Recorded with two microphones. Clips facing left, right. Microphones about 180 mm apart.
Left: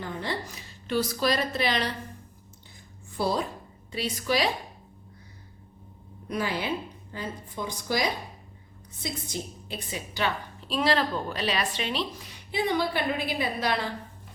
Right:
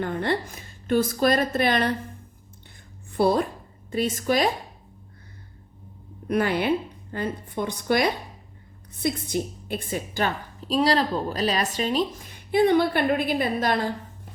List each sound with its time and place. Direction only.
0.0 s a woman's voice: 60° right (ahead or behind)
3.1 s a woman's voice: 55° right (ahead or behind)
6.2 s a woman's voice: 60° right (ahead or behind)